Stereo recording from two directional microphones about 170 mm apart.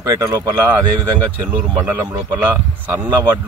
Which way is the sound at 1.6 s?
20° right (ahead or behind).